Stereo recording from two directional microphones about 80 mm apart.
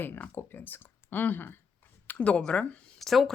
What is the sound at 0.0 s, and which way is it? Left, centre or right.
Speech, left.